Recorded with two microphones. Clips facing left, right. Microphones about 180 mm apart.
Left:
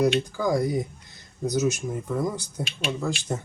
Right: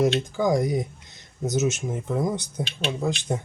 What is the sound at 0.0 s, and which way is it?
Speech, 20° right (ahead or behind).